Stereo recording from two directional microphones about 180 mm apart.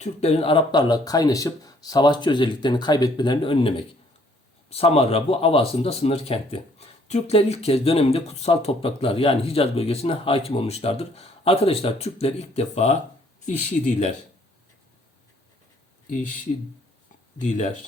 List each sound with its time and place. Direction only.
0.0 s speech: 35° left (ahead or behind)
16.0 s speech: 45° left (ahead or behind)
17.3 s speech: 40° left (ahead or behind)